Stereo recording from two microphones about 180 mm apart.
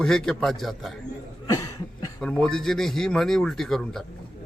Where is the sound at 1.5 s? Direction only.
20° left (ahead or behind).